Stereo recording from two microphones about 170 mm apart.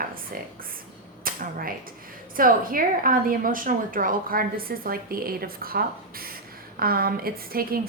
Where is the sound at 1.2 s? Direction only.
55° right (ahead or behind).